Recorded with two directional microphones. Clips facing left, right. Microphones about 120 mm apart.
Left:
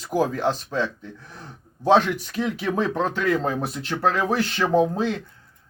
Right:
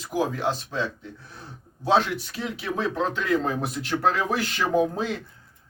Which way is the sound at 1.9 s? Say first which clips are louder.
Left 3 dB; 45° left (ahead or behind).